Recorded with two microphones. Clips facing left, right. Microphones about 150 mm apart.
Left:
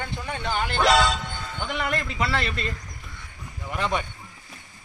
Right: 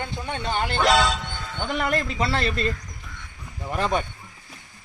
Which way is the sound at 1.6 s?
35° right (ahead or behind).